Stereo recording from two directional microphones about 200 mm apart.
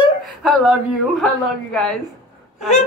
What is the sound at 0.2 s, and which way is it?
A woman's voice, centre (ahead or behind).